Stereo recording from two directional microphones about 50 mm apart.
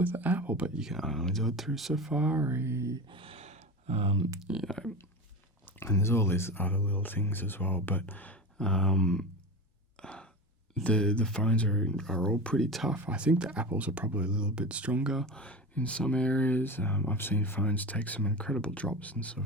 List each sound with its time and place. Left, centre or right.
0.0 s speech: right
1.0 s speech: centre
1.9 s speech: centre
2.1 s speech: right
2.4 s a sound: right
4.5 s speech: right
5.8 s speech: left
6.5 s speech: left
8.5 s speech: centre
10.0 s sigh: left
10.8 s speech: left
12.9 s speech: right
15.3 s speech: left